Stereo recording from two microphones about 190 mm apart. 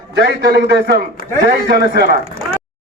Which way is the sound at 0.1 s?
60° right (ahead or behind).